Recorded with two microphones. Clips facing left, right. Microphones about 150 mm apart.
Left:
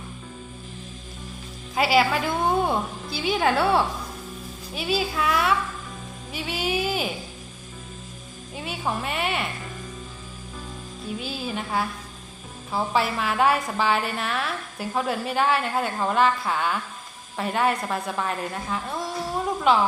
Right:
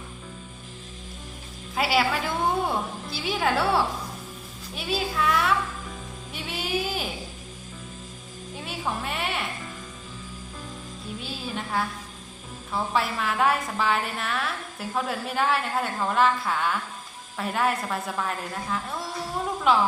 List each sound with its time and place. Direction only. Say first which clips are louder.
1.7 s a woman's voice: left 3 dB; centre (ahead or behind)
8.5 s music: left 3 dB; centre (ahead or behind)
9.0 s a woman's voice: left 3 dB; centre (ahead or behind)
11.2 s a woman's voice: left 2 dB; centre (ahead or behind)